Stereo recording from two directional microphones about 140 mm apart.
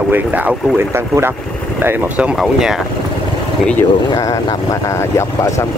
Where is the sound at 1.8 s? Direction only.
10° right (ahead or behind).